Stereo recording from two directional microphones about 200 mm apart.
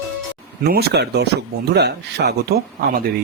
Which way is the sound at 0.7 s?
55° right (ahead or behind).